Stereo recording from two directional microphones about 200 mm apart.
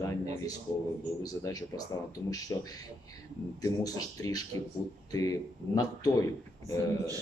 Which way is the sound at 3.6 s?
20° left (ahead or behind).